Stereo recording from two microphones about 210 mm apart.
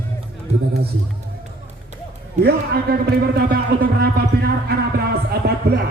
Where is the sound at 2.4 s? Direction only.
50° right (ahead or behind).